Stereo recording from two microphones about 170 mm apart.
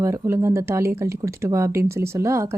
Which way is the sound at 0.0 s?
15° right (ahead or behind).